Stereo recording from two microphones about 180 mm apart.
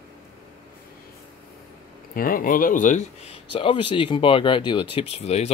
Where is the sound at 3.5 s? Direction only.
30° left (ahead or behind).